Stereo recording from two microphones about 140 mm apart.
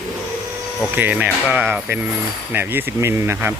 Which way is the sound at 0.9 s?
10° right (ahead or behind).